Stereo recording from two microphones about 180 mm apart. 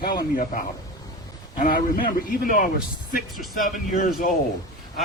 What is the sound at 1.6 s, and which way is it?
A man's voice, 50° left (ahead or behind).